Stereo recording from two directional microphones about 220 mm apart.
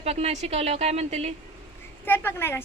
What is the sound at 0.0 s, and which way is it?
A woman's voice, 30° right (ahead or behind).